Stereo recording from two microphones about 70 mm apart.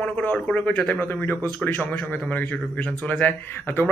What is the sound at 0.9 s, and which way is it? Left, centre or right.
A man's voice, left.